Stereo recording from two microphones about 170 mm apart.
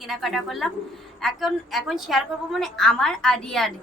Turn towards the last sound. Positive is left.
turn(degrees=0)  # may be behind; listen again after turning